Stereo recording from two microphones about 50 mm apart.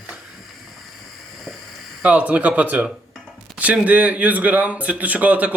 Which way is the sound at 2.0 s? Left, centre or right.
Right.